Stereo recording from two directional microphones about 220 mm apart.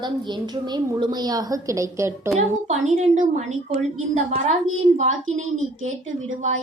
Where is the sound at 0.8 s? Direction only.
15° right (ahead or behind).